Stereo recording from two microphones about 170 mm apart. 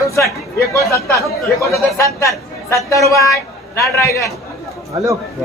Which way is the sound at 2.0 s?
15° left (ahead or behind).